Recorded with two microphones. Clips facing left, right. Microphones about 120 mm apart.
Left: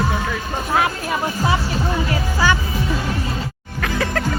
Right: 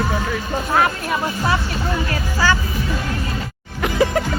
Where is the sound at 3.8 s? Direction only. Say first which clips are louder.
Right 4 dB; 20° right (ahead or behind).